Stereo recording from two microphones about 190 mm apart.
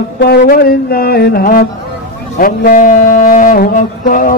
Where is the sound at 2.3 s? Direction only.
45° left (ahead or behind).